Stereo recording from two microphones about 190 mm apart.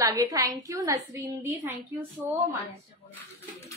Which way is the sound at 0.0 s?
15° right (ahead or behind).